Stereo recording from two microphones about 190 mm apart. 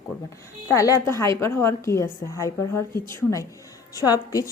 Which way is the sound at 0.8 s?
15° left (ahead or behind).